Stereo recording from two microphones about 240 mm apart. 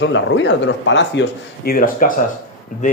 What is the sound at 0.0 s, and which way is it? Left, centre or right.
Speech, left.